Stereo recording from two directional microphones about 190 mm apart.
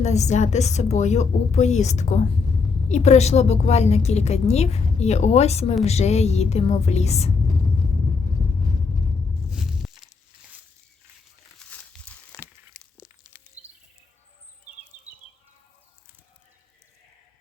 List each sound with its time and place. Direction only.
0.0 s a woman's voice: 35° left (ahead or behind)
9.5 s a sound: centre (ahead or behind)
11.6 s crumpling: 5° left (ahead or behind)